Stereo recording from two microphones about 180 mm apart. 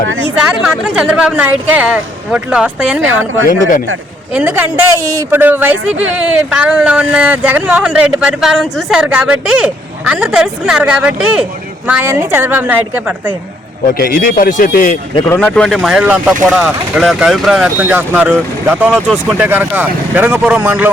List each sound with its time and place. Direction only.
0.5 s speech: 5° right (ahead or behind)
4.4 s speech: 10° right (ahead or behind)
14.0 s speech: 50° left (ahead or behind)
15.3 s speech: 10° left (ahead or behind); by 20.9 s 10° right (ahead or behind)